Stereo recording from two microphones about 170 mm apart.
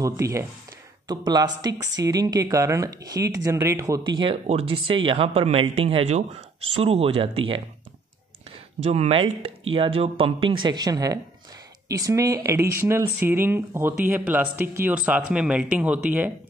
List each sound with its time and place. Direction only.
0.0 s speech: 20° right (ahead or behind)
8.8 s speech: 35° right (ahead or behind); by 16.3 s 10° right (ahead or behind)